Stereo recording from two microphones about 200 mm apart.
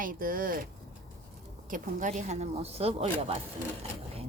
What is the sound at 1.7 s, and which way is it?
Speech, 40° right (ahead or behind).